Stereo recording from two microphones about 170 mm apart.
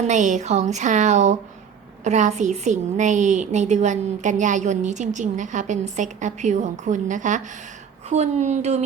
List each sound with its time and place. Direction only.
0.0 s a woman's voice: 45° right (ahead or behind)